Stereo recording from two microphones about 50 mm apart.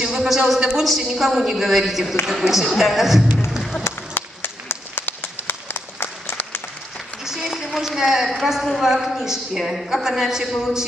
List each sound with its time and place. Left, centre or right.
0.0 s a man's voice: centre
3.8 s applause: left
7.2 s a woman's voice: centre